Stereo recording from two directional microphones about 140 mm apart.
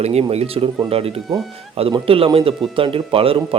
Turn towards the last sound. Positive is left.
turn(degrees=-40)  # may be behind; listen again after turning